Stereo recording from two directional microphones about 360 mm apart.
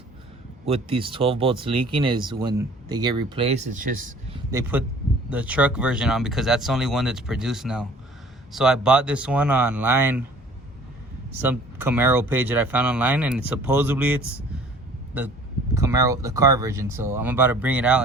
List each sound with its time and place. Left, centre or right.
0.6 s speech: centre
5.3 s speech: centre
11.3 s speech: centre
15.7 s speech: centre